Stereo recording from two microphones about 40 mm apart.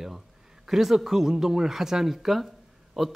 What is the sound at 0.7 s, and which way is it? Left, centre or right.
A woman's voice, centre.